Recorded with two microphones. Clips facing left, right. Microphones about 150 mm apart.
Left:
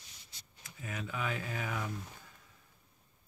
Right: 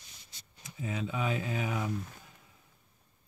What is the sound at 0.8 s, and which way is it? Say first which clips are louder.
Speech: right 5 dB; 25° right (ahead or behind).